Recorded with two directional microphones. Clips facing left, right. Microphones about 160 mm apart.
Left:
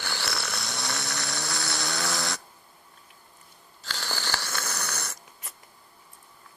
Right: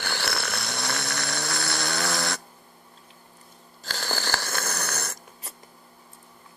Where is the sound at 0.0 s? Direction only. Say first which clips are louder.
Right 3 dB; 55° right (ahead or behind).